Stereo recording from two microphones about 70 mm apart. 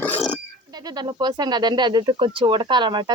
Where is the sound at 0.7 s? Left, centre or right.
Right.